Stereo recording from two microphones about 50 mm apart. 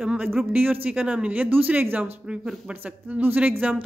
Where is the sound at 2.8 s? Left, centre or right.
Right.